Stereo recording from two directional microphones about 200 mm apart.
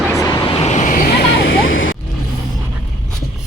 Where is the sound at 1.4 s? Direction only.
75° left (ahead or behind).